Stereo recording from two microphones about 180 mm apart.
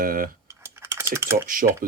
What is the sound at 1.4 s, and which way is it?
Speech, 50° right (ahead or behind).